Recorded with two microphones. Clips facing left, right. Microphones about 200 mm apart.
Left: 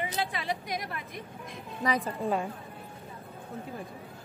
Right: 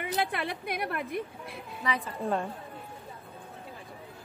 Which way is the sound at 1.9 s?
40° left (ahead or behind).